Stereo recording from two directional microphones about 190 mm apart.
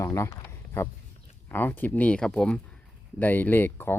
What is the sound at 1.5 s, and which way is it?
Speech, 10° left (ahead or behind).